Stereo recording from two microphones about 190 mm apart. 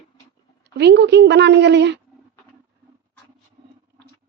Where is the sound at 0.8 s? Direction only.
65° right (ahead or behind).